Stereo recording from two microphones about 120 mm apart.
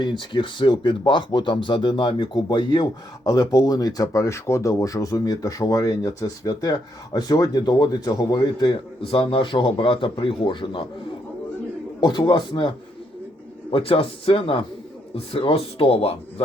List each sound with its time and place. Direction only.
0.0 s speech: 40° left (ahead or behind)
11.9 s speech: 40° left (ahead or behind); by 16.1 s 55° left (ahead or behind)